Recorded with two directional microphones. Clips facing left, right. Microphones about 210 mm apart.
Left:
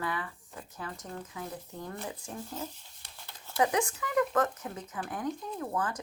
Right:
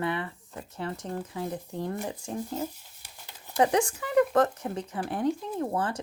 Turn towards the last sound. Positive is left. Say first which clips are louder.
# right 4 dB
turn(degrees=-30)  # may be behind; listen again after turning